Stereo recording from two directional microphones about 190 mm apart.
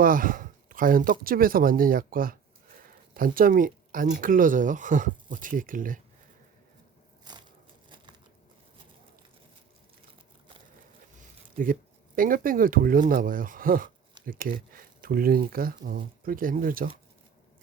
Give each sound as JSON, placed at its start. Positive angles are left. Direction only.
{"t": 0.0, "sound": "a sound", "side_deg": -45}
{"t": 1.2, "sound": "speech", "side_deg": -50}
{"t": 11.5, "sound": "speech", "side_deg": -45}